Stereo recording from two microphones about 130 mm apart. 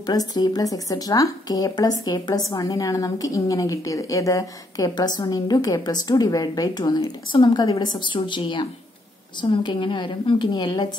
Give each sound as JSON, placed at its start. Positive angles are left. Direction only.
{"t": 0.0, "sound": "a woman's voice", "side_deg": 30}
{"t": 7.0, "sound": "speech", "side_deg": 40}